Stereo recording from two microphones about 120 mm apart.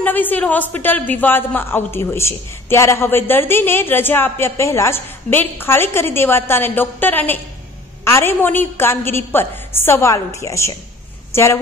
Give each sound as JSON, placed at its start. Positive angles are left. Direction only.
{"t": 0.0, "sound": "a man's voice", "side_deg": 15}